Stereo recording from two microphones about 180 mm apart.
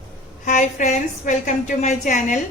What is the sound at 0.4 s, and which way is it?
Speech, 45° left (ahead or behind).